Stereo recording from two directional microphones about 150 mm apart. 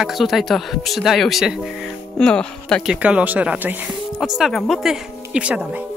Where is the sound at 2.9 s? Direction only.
10° right (ahead or behind).